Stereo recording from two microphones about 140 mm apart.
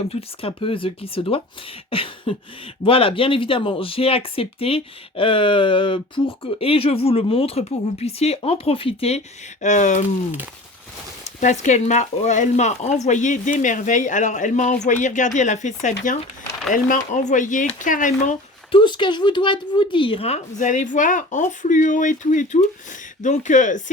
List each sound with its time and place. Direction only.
0.1 s speech: 45° left (ahead or behind)
1.9 s a sound: 40° left (ahead or behind)
2.8 s speech: 40° left (ahead or behind); by 10.0 s 60° left (ahead or behind)
11.3 s speech: 60° left (ahead or behind)
18.7 s speech: 35° left (ahead or behind); by 23.8 s 60° left (ahead or behind)